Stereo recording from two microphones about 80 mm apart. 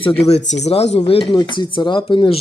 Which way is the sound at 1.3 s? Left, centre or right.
Left.